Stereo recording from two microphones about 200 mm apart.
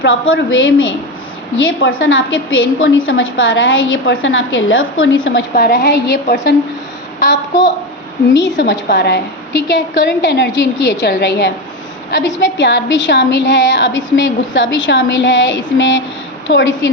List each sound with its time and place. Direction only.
0.0 s a woman's voice: 75° left (ahead or behind)
2.0 s a woman's voice: 80° left
5.5 s a woman's voice: 50° left (ahead or behind)